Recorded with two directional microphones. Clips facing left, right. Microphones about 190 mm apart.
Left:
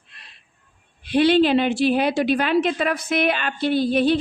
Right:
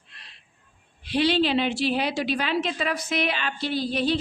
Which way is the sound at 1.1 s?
55° left (ahead or behind).